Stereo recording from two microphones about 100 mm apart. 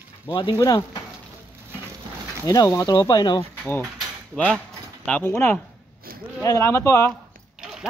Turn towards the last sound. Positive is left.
turn(degrees=25)  # may be behind; listen again after turning